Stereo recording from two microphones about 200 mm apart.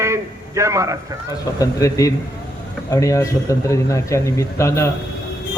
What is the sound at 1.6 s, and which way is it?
Speech, 15° left (ahead or behind).